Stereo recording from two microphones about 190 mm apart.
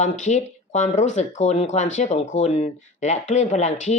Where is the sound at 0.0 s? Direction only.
40° left (ahead or behind).